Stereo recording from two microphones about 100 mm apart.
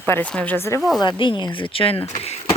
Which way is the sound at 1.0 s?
55° left (ahead or behind).